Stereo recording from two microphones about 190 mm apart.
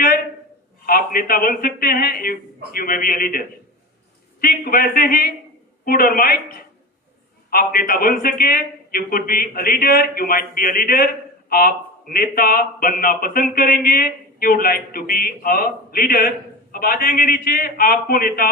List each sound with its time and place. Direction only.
0.9 s a man's voice: 50° left (ahead or behind)
7.5 s a man's voice: 50° left (ahead or behind)